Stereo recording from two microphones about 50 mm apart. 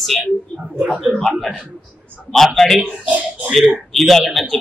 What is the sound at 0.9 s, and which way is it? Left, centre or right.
Speech, centre.